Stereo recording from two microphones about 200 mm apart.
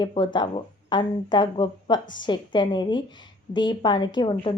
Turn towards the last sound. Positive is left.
turn(degrees=20)  # may be behind; listen again after turning